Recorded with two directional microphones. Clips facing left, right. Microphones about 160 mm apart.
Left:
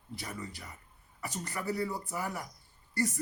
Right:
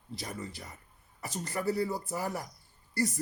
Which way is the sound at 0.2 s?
35° right (ahead or behind).